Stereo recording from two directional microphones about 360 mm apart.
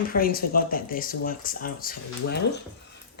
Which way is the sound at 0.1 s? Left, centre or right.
Left.